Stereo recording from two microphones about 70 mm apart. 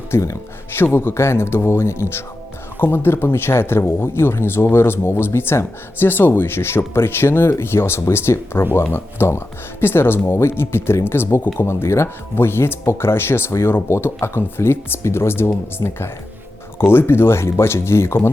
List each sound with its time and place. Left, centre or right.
0.1 s speech: left
0.9 s speech: left